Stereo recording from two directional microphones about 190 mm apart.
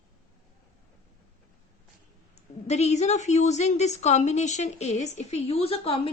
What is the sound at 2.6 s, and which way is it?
A woman's voice, 35° left (ahead or behind).